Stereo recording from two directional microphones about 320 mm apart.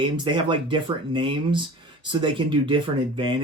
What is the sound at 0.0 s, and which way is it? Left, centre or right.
Speech, centre.